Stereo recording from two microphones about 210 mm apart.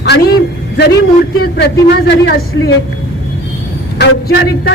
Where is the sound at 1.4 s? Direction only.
50° left (ahead or behind).